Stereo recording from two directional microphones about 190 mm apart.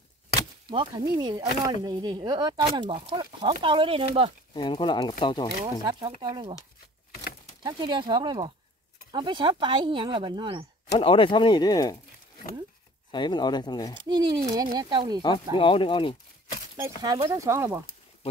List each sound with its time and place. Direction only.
0.7 s speech: 25° right (ahead or behind)
4.6 s speech: 25° left (ahead or behind)
5.9 s speech: 25° right (ahead or behind)
7.6 s speech: 25° right (ahead or behind)
10.9 s speech: 30° left (ahead or behind)
13.1 s speech: 25° left (ahead or behind)
13.9 s speech: 20° right (ahead or behind)
15.5 s speech: 25° left (ahead or behind)
16.8 s speech: 20° right (ahead or behind)